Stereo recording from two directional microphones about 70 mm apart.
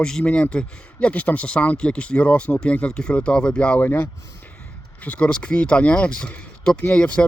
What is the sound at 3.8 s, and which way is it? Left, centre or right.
Speech, left.